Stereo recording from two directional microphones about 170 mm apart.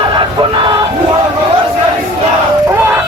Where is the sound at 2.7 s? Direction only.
10° right (ahead or behind).